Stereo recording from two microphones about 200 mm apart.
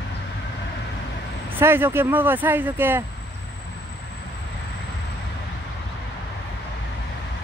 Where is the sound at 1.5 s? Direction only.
10° right (ahead or behind).